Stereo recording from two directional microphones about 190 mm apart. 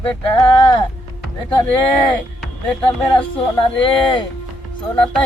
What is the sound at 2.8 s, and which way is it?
Speech, 25° left (ahead or behind).